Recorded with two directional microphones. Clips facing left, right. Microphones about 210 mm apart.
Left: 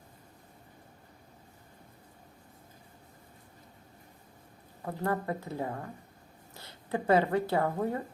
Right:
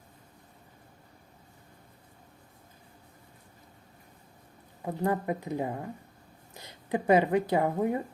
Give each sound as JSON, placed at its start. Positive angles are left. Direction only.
{"t": 4.9, "sound": "speech", "side_deg": -15}